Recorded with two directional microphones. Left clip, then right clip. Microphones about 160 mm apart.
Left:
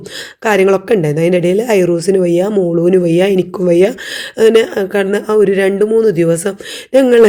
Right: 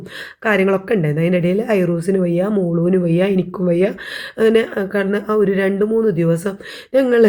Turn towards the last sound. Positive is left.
turn(degrees=40)  # may be behind; listen again after turning